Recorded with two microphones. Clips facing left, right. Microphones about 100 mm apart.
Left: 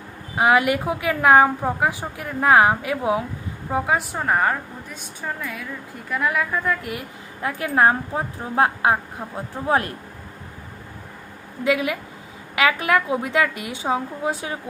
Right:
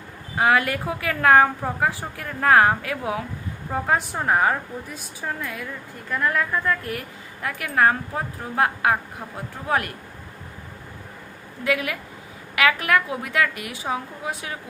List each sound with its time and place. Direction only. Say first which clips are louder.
0.3 s a woman's voice: left 2 dB; 20° left (ahead or behind)
3.7 s a woman's voice: left 1 dB; 10° left (ahead or behind); by 9.9 s 25° left (ahead or behind)
11.6 s a woman's voice: left 3 dB; 20° left (ahead or behind)